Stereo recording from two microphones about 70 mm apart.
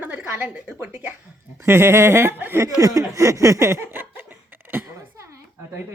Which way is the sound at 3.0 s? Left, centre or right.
Right.